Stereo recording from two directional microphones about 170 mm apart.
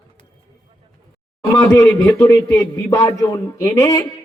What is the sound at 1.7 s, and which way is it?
A man's voice, 25° left (ahead or behind).